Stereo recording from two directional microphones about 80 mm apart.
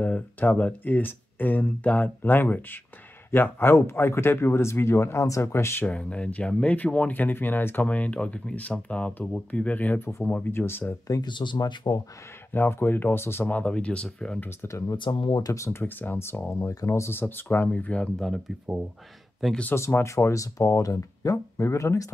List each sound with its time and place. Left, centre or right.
0.0 s speech: left
5.9 s speech: centre
11.2 s speech: left
11.7 s speech: left
12.5 s speech: left; by 14.4 s centre
14.7 s speech: left
15.0 s speech: left
15.5 s speech: left
15.8 s speech: left
19.7 s speech: left